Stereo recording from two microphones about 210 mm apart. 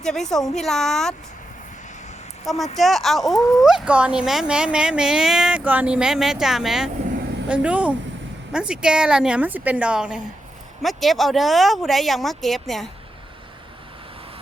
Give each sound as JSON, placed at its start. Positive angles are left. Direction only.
{"t": 0.0, "sound": "speech", "side_deg": 0}
{"t": 2.7, "sound": "speech", "side_deg": 0}
{"t": 3.3, "sound": "speech", "side_deg": 15}
{"t": 3.6, "sound": "speech", "side_deg": 0}